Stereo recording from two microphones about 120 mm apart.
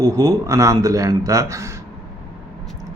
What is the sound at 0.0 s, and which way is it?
Speech, 25° right (ahead or behind).